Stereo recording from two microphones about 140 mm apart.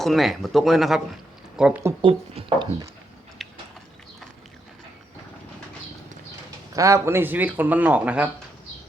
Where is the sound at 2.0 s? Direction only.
40° right (ahead or behind).